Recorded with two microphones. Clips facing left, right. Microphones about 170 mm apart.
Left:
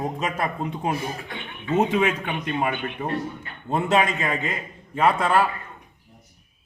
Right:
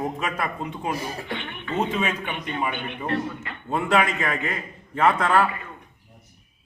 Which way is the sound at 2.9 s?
75° right (ahead or behind).